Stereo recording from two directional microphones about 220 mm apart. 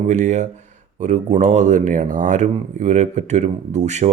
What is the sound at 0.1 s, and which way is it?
Speech, 35° right (ahead or behind).